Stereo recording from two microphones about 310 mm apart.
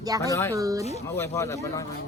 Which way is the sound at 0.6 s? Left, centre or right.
Centre.